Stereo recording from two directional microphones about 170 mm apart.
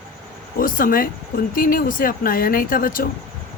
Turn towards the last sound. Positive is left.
turn(degrees=55)  # may be behind; listen again after turning